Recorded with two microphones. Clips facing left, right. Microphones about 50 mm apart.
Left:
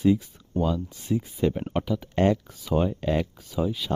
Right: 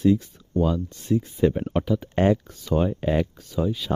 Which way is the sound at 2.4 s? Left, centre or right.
Centre.